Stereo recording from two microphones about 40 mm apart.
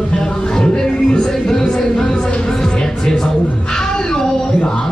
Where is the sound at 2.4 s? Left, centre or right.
Centre.